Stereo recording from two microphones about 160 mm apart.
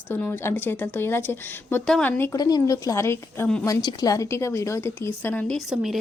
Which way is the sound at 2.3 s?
25° left (ahead or behind).